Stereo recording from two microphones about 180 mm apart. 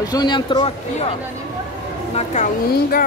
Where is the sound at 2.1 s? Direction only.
40° left (ahead or behind).